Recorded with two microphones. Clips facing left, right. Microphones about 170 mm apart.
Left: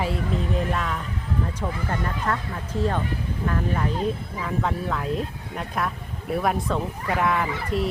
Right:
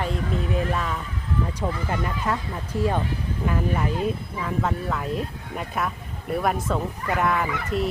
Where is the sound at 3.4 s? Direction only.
10° right (ahead or behind).